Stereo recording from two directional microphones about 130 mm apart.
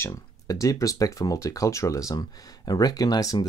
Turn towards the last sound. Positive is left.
turn(degrees=30)  # may be behind; listen again after turning